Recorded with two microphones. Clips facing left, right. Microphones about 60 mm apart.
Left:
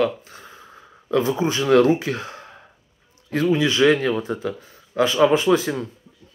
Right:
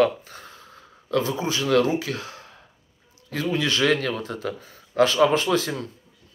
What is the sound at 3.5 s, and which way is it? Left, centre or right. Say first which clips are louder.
Speech: left 4 dB; centre.